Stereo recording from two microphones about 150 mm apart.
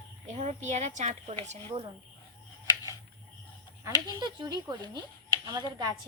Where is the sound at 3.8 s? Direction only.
25° right (ahead or behind).